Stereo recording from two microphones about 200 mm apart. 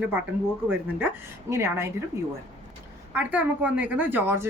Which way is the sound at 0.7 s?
10° right (ahead or behind).